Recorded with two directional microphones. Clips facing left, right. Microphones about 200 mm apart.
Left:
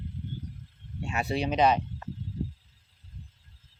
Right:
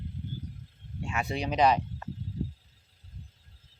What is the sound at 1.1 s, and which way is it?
Speech, 35° left (ahead or behind).